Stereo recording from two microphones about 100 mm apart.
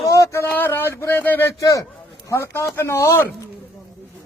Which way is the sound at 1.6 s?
35° left (ahead or behind).